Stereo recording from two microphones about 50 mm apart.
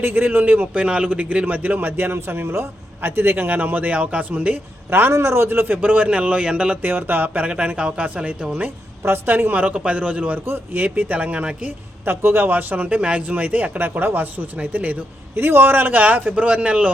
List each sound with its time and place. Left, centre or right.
0.0 s a man's voice: right
0.7 s a man's voice: right
4.9 s a man's voice: right; by 6.7 s centre
6.8 s a man's voice: right
7.4 s a man's voice: right
9.0 s speech: right
9.3 s a man's voice: right
10.4 s speech: right
10.8 s a man's voice: right
12.0 s a man's voice: right
15.4 s a man's voice: right